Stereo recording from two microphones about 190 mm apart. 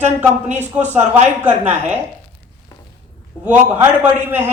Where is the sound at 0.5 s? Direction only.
10° right (ahead or behind).